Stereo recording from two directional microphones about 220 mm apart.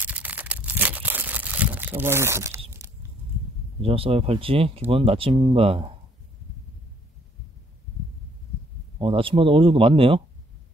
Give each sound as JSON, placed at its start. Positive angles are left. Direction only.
{"t": 0.0, "sound": "crumpling", "side_deg": -5}
{"t": 2.7, "sound": "a sound", "side_deg": -10}
{"t": 3.8, "sound": "speech", "side_deg": -25}
{"t": 8.9, "sound": "speech", "side_deg": -25}